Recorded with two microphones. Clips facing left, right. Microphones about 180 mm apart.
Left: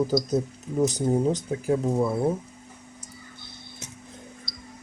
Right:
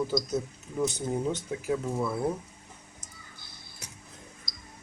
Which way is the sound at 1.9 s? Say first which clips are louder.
Left 6 dB; 25° left (ahead or behind).